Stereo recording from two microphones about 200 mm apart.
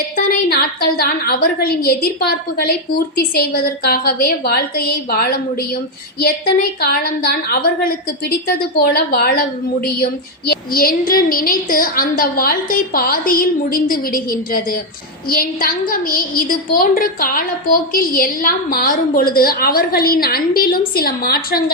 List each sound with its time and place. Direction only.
0.3 s a woman's voice: 50° left (ahead or behind)